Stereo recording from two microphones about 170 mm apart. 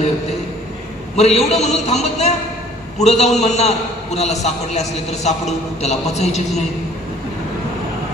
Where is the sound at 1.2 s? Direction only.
40° left (ahead or behind).